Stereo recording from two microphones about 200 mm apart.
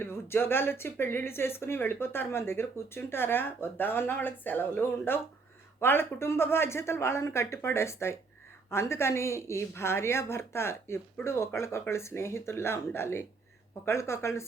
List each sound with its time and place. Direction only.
0.0 s speech: 10° left (ahead or behind)